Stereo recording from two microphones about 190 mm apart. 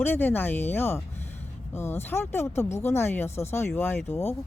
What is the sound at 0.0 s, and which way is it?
Speech, 10° left (ahead or behind).